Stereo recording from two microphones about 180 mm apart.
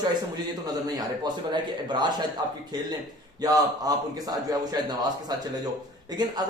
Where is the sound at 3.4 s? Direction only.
20° right (ahead or behind).